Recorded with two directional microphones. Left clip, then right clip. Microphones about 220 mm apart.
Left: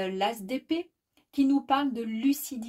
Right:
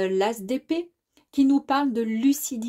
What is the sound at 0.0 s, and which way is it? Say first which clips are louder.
Speech: right 5 dB; 45° right (ahead or behind).